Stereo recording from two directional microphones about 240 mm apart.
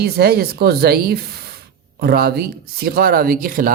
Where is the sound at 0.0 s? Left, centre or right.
Right.